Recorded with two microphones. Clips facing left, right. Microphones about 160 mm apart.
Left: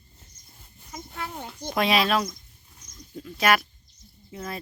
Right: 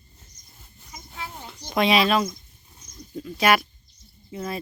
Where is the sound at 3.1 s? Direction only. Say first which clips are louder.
Right 2 dB; centre (ahead or behind).